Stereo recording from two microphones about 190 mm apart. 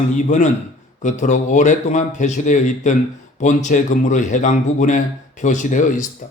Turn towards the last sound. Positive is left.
turn(degrees=40)  # may be behind; listen again after turning